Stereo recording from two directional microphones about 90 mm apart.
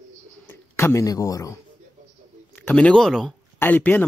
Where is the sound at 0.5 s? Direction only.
25° left (ahead or behind).